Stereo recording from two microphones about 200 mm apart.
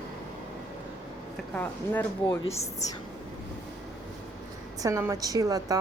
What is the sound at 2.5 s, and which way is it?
Speech, 35° left (ahead or behind).